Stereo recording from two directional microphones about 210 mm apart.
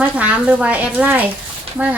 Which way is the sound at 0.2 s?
5° right (ahead or behind).